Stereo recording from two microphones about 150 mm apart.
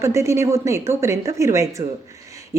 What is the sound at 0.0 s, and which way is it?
A woman's voice, 20° right (ahead or behind).